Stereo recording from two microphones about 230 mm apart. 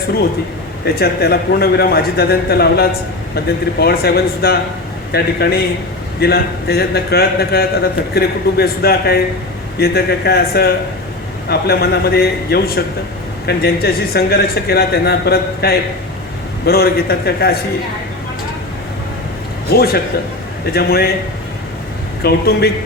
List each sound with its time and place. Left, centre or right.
0.9 s a man's voice: left
19.7 s a man's voice: left
22.2 s a man's voice: left